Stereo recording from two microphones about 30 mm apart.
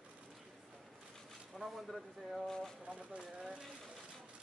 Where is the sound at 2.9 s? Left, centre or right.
Right.